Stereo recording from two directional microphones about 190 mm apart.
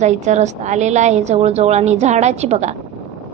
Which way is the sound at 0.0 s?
40° right (ahead or behind).